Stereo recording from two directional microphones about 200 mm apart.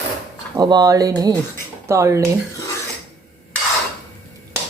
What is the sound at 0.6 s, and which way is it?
Speech, 20° right (ahead or behind).